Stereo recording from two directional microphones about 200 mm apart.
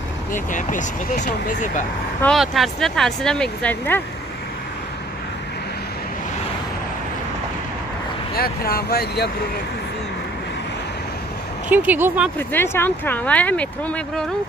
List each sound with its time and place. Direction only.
0.3 s speech: 40° left (ahead or behind)
2.2 s speech: centre (ahead or behind)
8.4 s speech: 50° left (ahead or behind)
11.7 s speech: 10° right (ahead or behind)
12.4 s speech: 10° left (ahead or behind)